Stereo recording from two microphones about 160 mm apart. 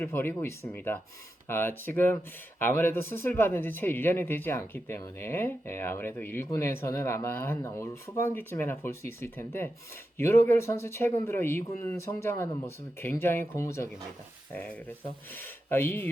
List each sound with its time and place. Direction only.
0.0 s speech: 15° left (ahead or behind)
15.4 s speech: 15° left (ahead or behind)